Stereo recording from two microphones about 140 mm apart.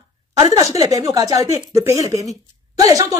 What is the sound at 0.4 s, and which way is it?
Speech, 25° right (ahead or behind).